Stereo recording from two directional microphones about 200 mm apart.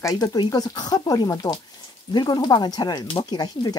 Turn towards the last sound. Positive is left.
turn(degrees=20)  # may be behind; listen again after turning